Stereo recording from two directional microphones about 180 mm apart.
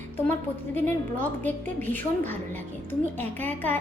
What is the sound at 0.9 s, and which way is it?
A woman's voice, 10° left (ahead or behind).